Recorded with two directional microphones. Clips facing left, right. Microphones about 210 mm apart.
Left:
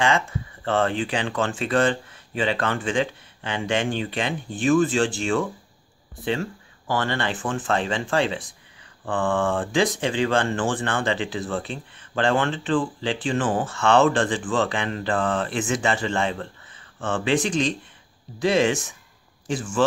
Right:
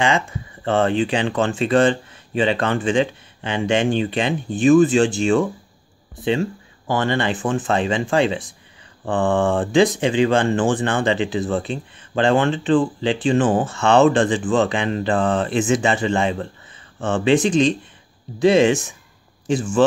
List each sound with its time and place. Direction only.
0.7 s a man's voice: 20° right (ahead or behind)